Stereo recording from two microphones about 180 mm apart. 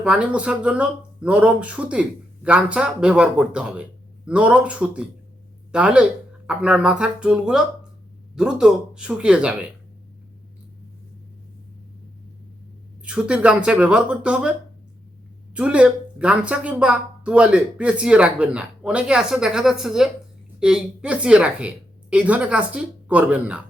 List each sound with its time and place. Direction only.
0.0 s speech: 5° right (ahead or behind)
13.1 s speech: 5° right (ahead or behind)
15.5 s speech: 5° right (ahead or behind)